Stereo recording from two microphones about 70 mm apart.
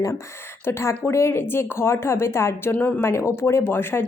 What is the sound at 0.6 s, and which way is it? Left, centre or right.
A woman's voice, left.